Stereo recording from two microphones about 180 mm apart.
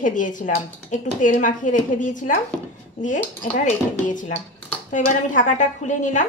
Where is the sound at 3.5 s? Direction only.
45° left (ahead or behind).